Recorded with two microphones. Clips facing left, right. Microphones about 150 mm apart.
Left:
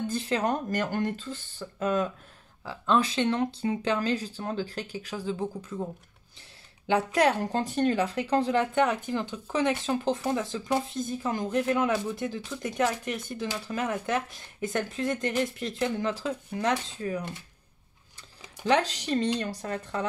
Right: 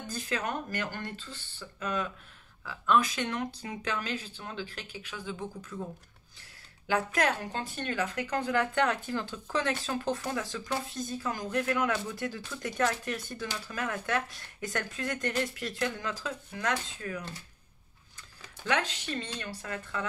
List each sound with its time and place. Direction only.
0.0 s speech: 25° left (ahead or behind); by 2.1 s 45° left (ahead or behind)
2.6 s speech: 30° left (ahead or behind)
6.9 s speech: 35° left (ahead or behind)
18.7 s speech: 35° left (ahead or behind)